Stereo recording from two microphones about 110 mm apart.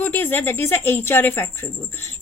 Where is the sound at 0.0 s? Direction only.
15° left (ahead or behind).